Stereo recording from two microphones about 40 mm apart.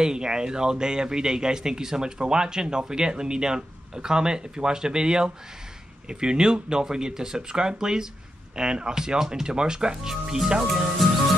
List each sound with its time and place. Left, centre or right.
0.0 s a man's voice: centre